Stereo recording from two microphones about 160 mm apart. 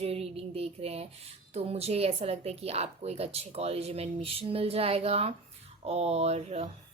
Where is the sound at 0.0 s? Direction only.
40° right (ahead or behind).